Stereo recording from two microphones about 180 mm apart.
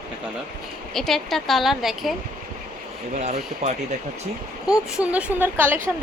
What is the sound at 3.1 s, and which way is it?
Speech, 40° right (ahead or behind).